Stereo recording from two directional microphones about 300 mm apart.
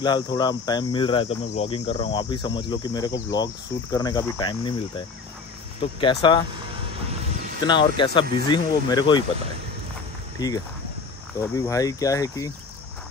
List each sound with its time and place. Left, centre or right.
0.0 s speech: centre
7.6 s speech: centre
10.4 s speech: centre